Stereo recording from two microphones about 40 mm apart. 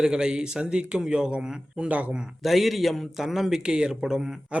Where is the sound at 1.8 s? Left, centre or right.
Right.